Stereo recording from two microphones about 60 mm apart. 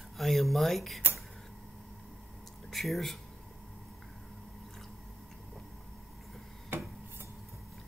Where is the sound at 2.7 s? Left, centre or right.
Centre.